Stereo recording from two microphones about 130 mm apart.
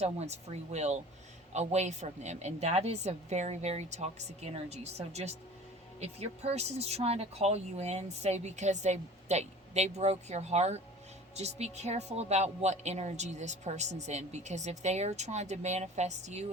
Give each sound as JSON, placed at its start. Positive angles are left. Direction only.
{"t": 0.0, "sound": "a man's voice", "side_deg": -55}